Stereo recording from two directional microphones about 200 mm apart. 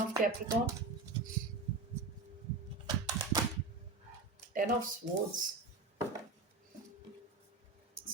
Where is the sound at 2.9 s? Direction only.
20° right (ahead or behind).